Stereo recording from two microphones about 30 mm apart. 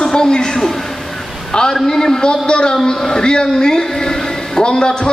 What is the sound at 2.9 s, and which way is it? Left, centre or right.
A man's voice, centre.